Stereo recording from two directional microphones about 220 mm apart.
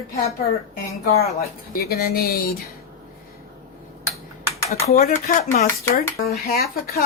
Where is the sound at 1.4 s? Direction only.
45° left (ahead or behind).